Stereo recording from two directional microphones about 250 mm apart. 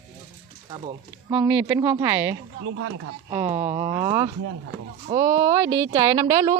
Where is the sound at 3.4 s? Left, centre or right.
Right.